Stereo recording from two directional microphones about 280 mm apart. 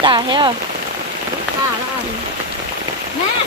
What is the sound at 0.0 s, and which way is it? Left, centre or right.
Speech, centre.